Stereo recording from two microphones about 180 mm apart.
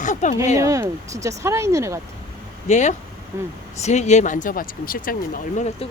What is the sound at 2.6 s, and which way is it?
Speech, 40° left (ahead or behind).